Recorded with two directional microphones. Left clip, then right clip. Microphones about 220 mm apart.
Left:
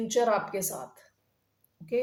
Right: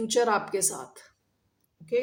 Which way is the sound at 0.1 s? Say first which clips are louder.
Right 1 dB; 50° right (ahead or behind).